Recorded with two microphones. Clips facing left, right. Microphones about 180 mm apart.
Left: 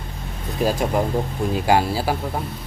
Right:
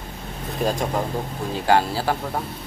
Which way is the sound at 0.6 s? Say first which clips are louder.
Left 3 dB; 5° left (ahead or behind).